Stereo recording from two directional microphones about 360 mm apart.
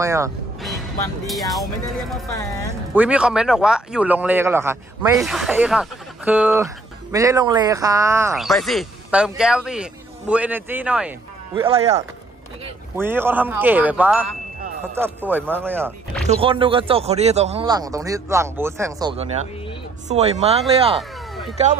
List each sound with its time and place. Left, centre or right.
0.0 s music: centre
1.2 s speech: centre
11.6 s speech: centre